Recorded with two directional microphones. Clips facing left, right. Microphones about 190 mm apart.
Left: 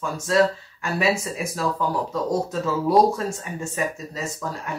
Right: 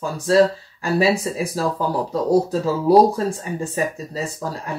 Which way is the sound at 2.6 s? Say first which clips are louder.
Right 2 dB; 35° right (ahead or behind).